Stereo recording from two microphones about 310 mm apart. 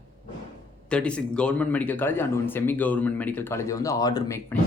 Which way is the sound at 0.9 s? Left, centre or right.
Centre.